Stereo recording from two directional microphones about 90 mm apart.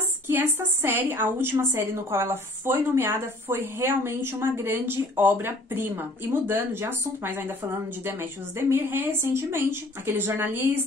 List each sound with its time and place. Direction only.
0.3 s a woman's voice: 25° right (ahead or behind)